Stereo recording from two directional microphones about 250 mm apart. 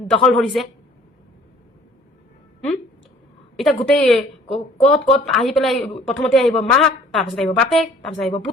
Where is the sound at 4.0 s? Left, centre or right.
Centre.